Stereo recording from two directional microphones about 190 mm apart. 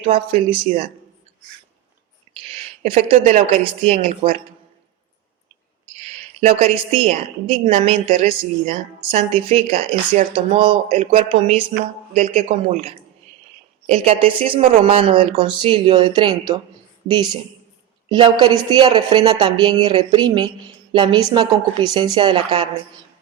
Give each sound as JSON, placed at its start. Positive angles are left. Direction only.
{"t": 0.0, "sound": "speech", "side_deg": -30}
{"t": 2.3, "sound": "a woman's voice", "side_deg": -30}
{"t": 6.4, "sound": "a woman's voice", "side_deg": -35}
{"t": 18.1, "sound": "speech", "side_deg": -25}